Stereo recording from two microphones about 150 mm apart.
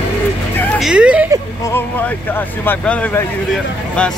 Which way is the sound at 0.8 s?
5° right (ahead or behind).